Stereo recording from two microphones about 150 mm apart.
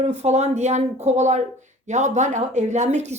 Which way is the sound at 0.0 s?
45° right (ahead or behind).